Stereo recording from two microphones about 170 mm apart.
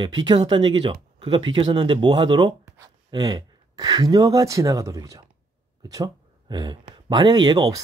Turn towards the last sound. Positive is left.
turn(degrees=-25)  # may be behind; listen again after turning